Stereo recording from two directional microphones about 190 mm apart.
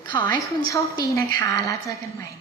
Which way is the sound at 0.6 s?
15° left (ahead or behind).